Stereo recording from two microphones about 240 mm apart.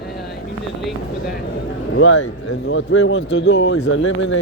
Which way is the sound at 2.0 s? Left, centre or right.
Left.